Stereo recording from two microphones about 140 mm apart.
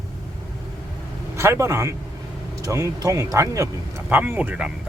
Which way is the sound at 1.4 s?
20° right (ahead or behind).